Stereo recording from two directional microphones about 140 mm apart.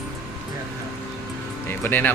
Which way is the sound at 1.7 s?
15° left (ahead or behind).